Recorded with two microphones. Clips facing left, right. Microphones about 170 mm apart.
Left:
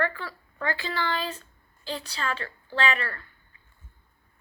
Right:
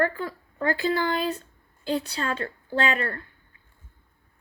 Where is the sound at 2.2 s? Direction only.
45° right (ahead or behind).